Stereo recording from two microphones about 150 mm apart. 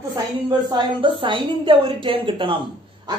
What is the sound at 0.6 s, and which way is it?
A woman's voice, 30° right (ahead or behind).